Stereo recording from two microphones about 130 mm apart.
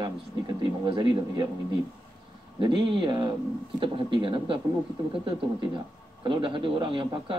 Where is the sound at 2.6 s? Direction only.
40° right (ahead or behind).